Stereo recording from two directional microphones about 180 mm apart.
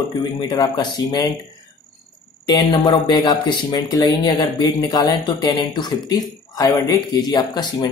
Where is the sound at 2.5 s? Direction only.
25° left (ahead or behind).